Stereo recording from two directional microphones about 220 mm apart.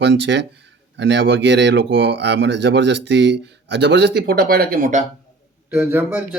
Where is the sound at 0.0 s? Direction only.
55° right (ahead or behind); by 5.0 s 35° right (ahead or behind).